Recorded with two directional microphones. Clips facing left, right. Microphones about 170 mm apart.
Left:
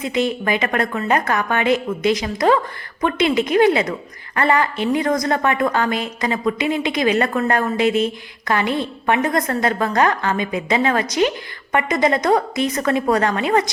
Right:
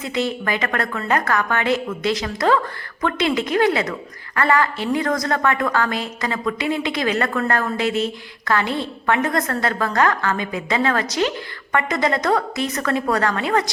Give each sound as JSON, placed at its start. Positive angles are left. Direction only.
{"t": 0.0, "sound": "a woman's voice", "side_deg": 20}